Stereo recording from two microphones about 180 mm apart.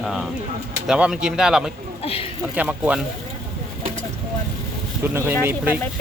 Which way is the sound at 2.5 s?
5° right (ahead or behind).